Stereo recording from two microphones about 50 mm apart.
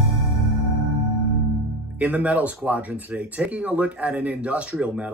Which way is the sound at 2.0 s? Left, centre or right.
Right.